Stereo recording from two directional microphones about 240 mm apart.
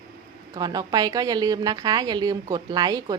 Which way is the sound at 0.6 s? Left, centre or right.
Centre.